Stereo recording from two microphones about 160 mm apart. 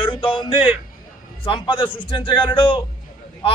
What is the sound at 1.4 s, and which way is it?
A man's voice, 30° left (ahead or behind).